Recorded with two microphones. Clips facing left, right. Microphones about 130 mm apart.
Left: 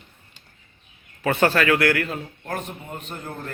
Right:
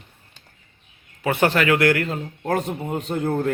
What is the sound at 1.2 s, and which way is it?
Speech, 15° right (ahead or behind).